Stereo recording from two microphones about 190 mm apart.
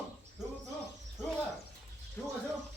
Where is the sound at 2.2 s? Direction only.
10° left (ahead or behind).